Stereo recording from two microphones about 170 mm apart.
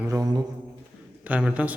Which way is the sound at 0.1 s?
20° right (ahead or behind).